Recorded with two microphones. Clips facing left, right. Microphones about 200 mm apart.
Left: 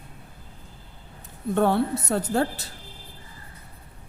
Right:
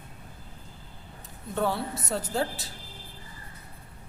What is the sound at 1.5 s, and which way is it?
A woman's voice, 60° left (ahead or behind).